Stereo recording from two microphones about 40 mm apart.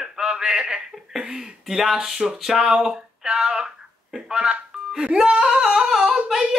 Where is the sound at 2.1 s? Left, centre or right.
Centre.